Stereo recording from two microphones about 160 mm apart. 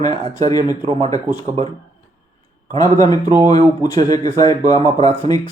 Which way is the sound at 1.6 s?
40° right (ahead or behind).